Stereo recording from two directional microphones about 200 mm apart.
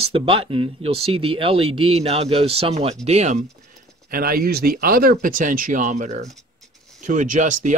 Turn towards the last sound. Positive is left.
turn(degrees=-40)  # may be behind; listen again after turning